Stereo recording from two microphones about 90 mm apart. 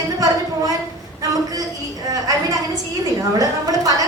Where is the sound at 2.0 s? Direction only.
45° right (ahead or behind).